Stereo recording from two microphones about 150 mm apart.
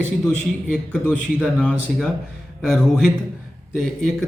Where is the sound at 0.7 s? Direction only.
5° left (ahead or behind).